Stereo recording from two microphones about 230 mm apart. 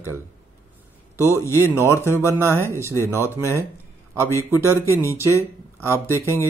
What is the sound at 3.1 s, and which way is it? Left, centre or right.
Speech, centre.